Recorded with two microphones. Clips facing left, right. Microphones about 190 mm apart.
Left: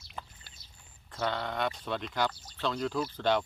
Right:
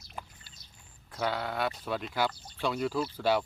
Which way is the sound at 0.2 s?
10° right (ahead or behind).